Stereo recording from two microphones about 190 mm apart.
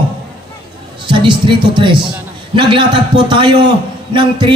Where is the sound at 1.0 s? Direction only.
25° right (ahead or behind).